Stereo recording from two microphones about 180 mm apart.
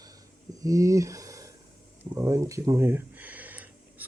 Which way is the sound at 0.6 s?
20° right (ahead or behind).